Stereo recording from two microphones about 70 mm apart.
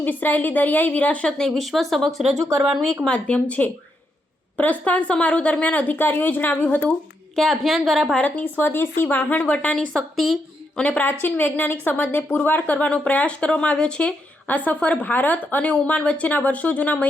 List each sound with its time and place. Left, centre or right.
0.0 s a woman's voice: left
1.4 s speech: centre
3.1 s a woman's voice: centre
7.3 s speech: centre
8.1 s a woman's voice: left
9.9 s speech: centre
10.8 s a woman's voice: centre